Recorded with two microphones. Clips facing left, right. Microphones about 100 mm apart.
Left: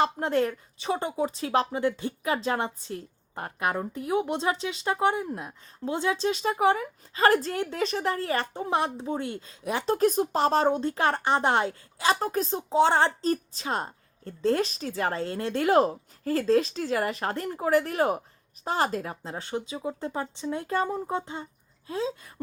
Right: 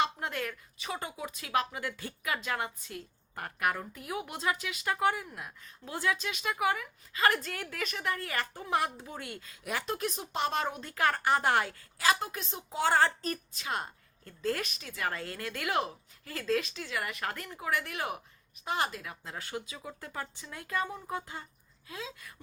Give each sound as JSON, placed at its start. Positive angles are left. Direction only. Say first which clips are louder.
{"t": 0.0, "sound": "speech", "louder": "left 8 dB", "side_deg": 35}
{"t": 9.9, "sound": "speech", "louder": "left 16 dB", "side_deg": 40}
{"t": 12.2, "sound": "a woman's voice", "louder": "left 11 dB", "side_deg": 40}
{"t": 12.7, "sound": "a woman's voice", "louder": "left 5 dB", "side_deg": 25}
{"t": 21.2, "sound": "a woman's voice", "louder": "left 7 dB", "side_deg": 25}